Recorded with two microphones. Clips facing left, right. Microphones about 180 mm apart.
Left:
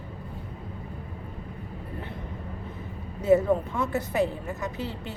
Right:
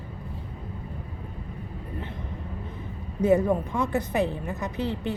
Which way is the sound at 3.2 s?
15° right (ahead or behind).